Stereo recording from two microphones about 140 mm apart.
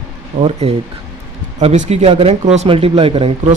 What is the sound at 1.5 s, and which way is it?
A man's voice, 55° right (ahead or behind).